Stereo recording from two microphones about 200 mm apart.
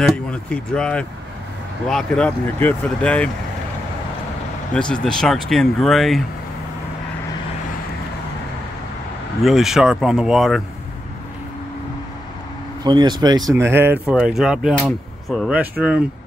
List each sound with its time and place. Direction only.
0.0 s speech: 5° left (ahead or behind)
4.7 s speech: 5° left (ahead or behind)
9.4 s speech: centre (ahead or behind)
12.8 s speech: 20° right (ahead or behind)